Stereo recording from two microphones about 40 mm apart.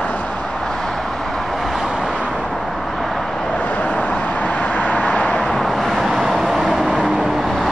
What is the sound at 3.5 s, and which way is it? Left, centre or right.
Vehicle, left.